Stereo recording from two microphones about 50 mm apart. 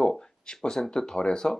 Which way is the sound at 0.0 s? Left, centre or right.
Centre.